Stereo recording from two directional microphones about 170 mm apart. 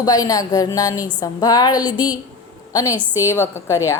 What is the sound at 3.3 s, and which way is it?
Speech, 15° left (ahead or behind).